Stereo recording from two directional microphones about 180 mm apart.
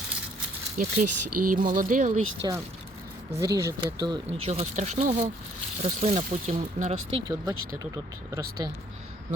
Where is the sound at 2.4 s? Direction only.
20° right (ahead or behind).